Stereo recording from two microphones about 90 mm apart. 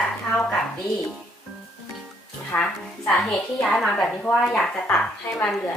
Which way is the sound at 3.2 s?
5° left (ahead or behind).